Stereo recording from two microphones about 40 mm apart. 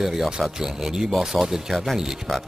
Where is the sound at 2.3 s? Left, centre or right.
Centre.